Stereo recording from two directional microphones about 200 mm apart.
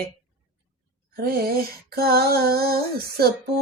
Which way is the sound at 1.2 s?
50° right (ahead or behind).